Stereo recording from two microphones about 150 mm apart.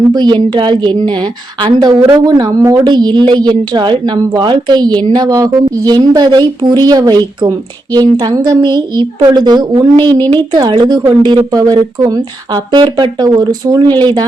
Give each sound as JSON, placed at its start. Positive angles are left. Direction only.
{"t": 0.1, "sound": "a woman's voice", "side_deg": -30}